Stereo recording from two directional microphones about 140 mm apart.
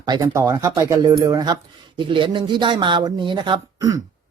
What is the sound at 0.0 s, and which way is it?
Speech, 30° right (ahead or behind).